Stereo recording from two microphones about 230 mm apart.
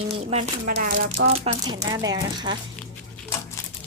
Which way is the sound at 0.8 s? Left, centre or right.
Right.